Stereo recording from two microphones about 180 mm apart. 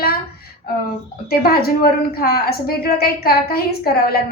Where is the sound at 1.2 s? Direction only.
55° left (ahead or behind).